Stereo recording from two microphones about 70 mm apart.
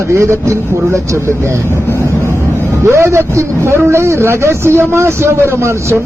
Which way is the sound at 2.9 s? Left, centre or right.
Right.